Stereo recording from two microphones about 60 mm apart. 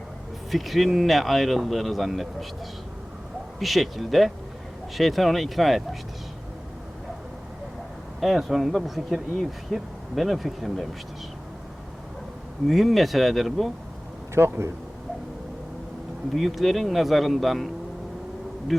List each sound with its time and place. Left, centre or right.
0.5 s speech: centre
3.6 s speech: centre
8.2 s speech: centre
12.6 s speech: centre
14.3 s speech: right
16.3 s speech: centre
18.7 s speech: centre